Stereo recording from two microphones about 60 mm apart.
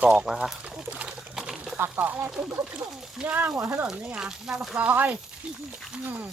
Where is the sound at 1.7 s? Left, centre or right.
Right.